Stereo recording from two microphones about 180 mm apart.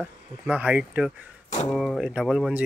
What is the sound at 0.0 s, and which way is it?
Speech, 5° right (ahead or behind).